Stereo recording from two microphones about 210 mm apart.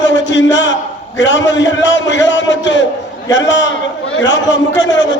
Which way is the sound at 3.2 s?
60° left (ahead or behind).